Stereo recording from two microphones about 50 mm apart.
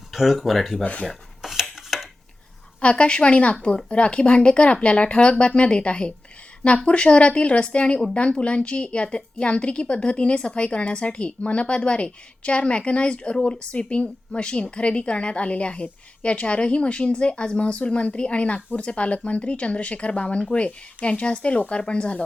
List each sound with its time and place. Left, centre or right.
0.1 s speech: centre
1.4 s stir: centre
1.7 s dishes: centre
2.8 s a woman's voice: left